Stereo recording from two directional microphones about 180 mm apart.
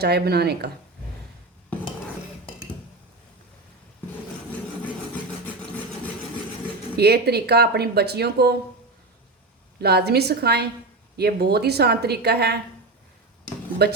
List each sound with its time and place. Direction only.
0.0 s speech: 65° right (ahead or behind)
6.9 s speech: 60° right (ahead or behind)
9.7 s speech: 60° right (ahead or behind)
13.8 s speech: 65° right (ahead or behind)